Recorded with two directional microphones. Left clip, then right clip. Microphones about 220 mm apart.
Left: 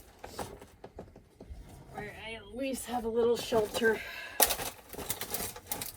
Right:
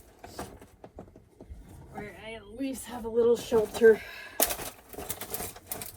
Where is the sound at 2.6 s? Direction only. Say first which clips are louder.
Left 3 dB; 20° right (ahead or behind).